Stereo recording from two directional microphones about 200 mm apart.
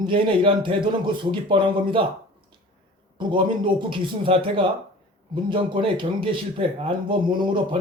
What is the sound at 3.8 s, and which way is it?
A man's voice, 25° right (ahead or behind).